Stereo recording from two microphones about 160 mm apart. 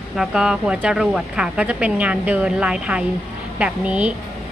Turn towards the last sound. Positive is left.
turn(degrees=-5)  # may be behind; listen again after turning